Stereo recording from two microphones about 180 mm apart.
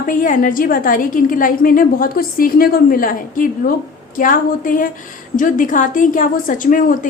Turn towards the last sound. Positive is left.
turn(degrees=50)  # may be behind; listen again after turning